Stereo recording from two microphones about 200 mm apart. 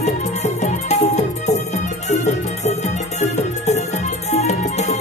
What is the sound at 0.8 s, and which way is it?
Music, 35° left (ahead or behind).